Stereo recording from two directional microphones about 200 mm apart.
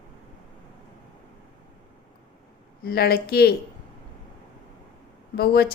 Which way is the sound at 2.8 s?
50° left (ahead or behind).